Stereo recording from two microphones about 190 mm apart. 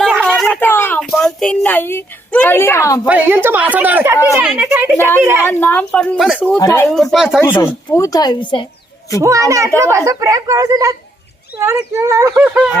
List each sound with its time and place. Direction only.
0.0 s a sound: 5° right (ahead or behind); by 3.1 s 15° left (ahead or behind)
3.1 s speech: 10° right (ahead or behind)
4.9 s a woman's voice: 10° left (ahead or behind)
6.6 s speech: 15° left (ahead or behind)
6.9 s a woman's voice: centre (ahead or behind)
7.6 s speech: 15° left (ahead or behind)
9.2 s speech: 15° right (ahead or behind)